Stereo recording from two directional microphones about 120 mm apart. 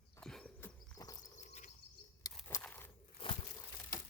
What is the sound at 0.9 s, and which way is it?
Bird, 30° left (ahead or behind).